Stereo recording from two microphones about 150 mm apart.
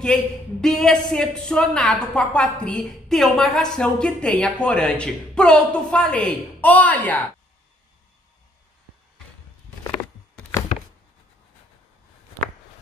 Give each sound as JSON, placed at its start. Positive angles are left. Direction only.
{"t": 0.0, "sound": "a man's voice", "side_deg": 5}